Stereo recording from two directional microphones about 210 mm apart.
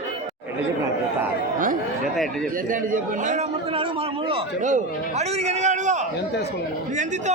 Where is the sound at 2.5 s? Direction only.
40° right (ahead or behind).